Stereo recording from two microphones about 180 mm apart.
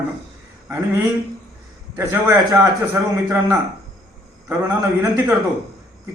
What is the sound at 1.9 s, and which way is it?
A man's voice, 15° right (ahead or behind).